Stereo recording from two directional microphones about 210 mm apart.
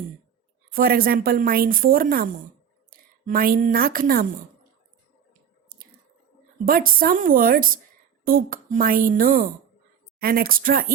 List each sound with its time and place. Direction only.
0.7 s a woman's voice: 45° right (ahead or behind)
5.7 s a sound: 45° right (ahead or behind)
6.7 s a woman's voice: 45° right (ahead or behind)